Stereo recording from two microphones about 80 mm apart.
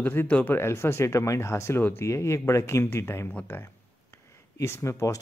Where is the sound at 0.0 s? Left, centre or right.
Left.